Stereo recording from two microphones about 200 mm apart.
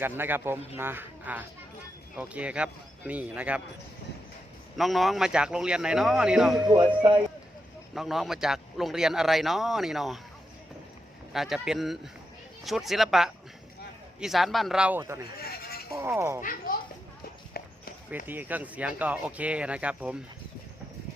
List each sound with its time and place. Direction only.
0.2 s speech: 10° right (ahead or behind)
4.8 s a man's voice: centre (ahead or behind)
7.9 s a man's voice: centre (ahead or behind)
11.3 s a man's voice: centre (ahead or behind)
15.4 s sheep: 50° left (ahead or behind)
16.0 s speech: 10° right (ahead or behind)
16.4 s speech: 45° left (ahead or behind)
18.3 s speech: 10° right (ahead or behind)